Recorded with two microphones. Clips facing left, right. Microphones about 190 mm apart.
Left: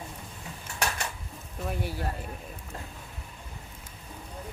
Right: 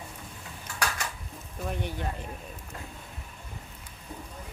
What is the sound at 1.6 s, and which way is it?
Speech, 5° left (ahead or behind).